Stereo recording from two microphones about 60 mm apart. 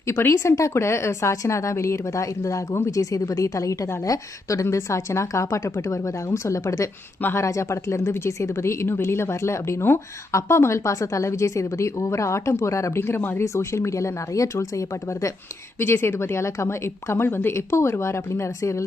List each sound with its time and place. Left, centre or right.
0.2 s a woman's voice: left
13.0 s speech: left
13.4 s a woman's voice: left
15.8 s speech: left